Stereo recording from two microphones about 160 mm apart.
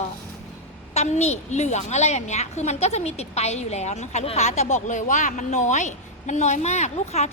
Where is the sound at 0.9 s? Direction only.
45° left (ahead or behind).